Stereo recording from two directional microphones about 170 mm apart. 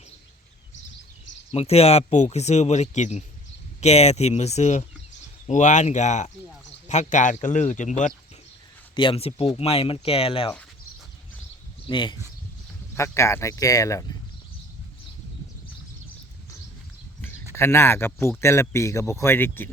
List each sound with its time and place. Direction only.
1.5 s speech: 35° left (ahead or behind)
9.0 s speech: 35° left (ahead or behind)
11.9 s speech: 30° left (ahead or behind)
13.0 s speech: 15° left (ahead or behind)
17.5 s speech: 15° left (ahead or behind)